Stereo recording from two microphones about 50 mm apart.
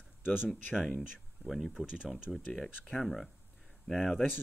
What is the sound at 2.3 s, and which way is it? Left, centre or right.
Speech, centre.